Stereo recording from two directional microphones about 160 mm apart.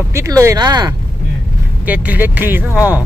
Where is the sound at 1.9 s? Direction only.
10° right (ahead or behind).